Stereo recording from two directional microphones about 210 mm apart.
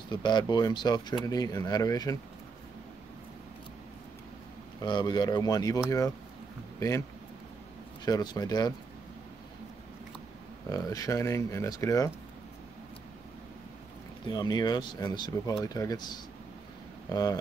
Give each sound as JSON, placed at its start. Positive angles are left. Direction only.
{"t": 0.1, "sound": "speech", "side_deg": 20}
{"t": 4.8, "sound": "speech", "side_deg": 20}
{"t": 10.7, "sound": "speech", "side_deg": 15}
{"t": 14.2, "sound": "speech", "side_deg": 20}